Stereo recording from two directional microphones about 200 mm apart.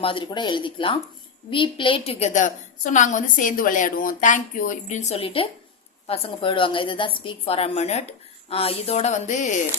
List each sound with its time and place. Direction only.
0.0 s a woman's voice: 25° left (ahead or behind)